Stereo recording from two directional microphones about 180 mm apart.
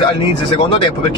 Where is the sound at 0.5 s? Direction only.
30° left (ahead or behind).